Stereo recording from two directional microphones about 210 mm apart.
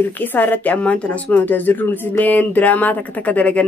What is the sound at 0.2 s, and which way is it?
A woman's voice, 10° left (ahead or behind).